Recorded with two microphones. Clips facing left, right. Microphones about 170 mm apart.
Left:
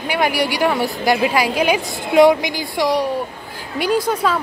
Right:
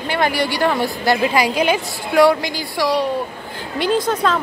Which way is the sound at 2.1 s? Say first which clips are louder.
Left 2 dB; 20° left (ahead or behind).